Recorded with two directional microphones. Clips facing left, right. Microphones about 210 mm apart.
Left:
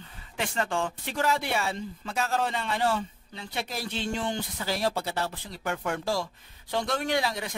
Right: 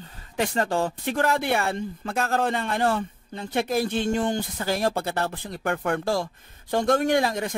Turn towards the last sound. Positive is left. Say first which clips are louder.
# right 6 dB
turn(degrees=-50)  # may be behind; listen again after turning